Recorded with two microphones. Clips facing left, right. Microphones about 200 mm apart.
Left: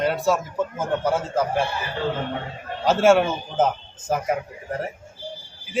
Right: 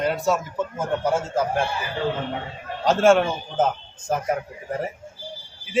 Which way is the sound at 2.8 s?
5° left (ahead or behind).